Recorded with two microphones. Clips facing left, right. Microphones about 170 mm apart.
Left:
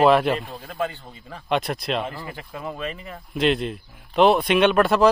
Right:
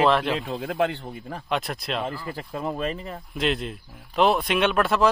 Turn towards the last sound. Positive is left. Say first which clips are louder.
# left 4 dB
turn(degrees=0)  # may be behind; listen again after turning